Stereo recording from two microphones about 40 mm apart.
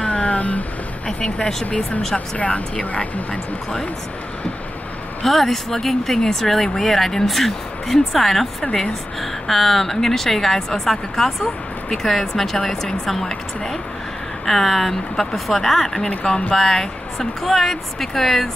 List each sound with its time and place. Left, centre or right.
0.0 s a sound: left
1.0 s speech: left
1.8 s speech: centre
2.1 s speech: left
5.2 s speech: centre